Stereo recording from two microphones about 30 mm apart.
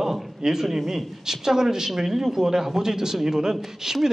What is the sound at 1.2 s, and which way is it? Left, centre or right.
Speech, centre.